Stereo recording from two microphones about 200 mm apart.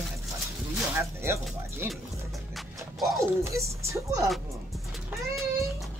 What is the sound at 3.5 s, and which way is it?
Speech, 15° right (ahead or behind).